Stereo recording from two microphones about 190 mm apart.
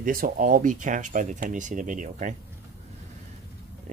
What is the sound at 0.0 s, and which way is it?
Speech, 45° right (ahead or behind).